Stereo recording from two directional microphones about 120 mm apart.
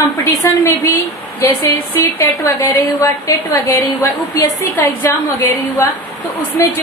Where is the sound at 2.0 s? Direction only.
20° left (ahead or behind).